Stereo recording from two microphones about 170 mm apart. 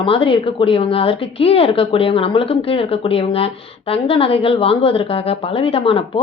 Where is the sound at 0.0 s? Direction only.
30° left (ahead or behind).